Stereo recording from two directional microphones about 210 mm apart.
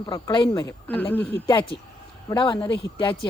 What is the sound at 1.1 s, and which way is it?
Speech, 10° left (ahead or behind).